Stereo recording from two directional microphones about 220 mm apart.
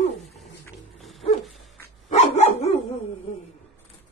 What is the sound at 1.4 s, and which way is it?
Dog, centre (ahead or behind).